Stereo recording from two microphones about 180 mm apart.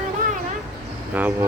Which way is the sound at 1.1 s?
10° right (ahead or behind).